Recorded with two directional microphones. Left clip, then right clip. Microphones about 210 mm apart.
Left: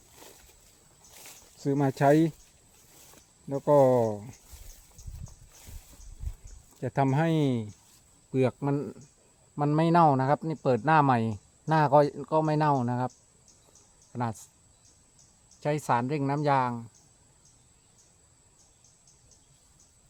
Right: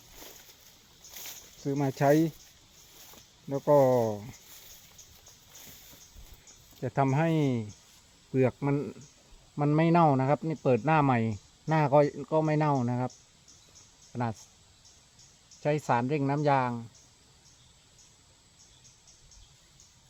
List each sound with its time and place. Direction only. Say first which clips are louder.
1.1 s a sound: right 5 dB; centre (ahead or behind)
1.6 s speech: left 2 dB; 25° left (ahead or behind)
3.5 s speech: left 1 dB; 5° left (ahead or behind)
6.8 s speech: left 1 dB; 15° left (ahead or behind)
8.3 s speech: even; 5° left (ahead or behind)
15.6 s speech: even; centre (ahead or behind)